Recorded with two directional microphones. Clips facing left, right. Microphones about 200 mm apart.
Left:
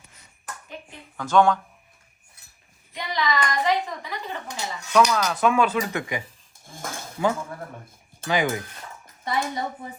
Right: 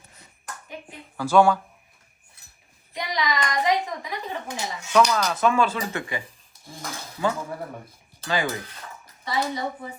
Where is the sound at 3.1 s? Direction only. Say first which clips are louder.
Left 1 dB; 15° right (ahead or behind).